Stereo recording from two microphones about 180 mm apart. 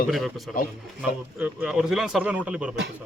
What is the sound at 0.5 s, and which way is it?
A man's voice, centre (ahead or behind).